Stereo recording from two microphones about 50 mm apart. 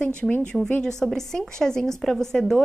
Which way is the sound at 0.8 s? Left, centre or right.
Centre.